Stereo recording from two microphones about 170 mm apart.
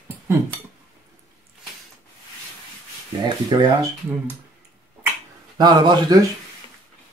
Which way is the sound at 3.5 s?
25° right (ahead or behind).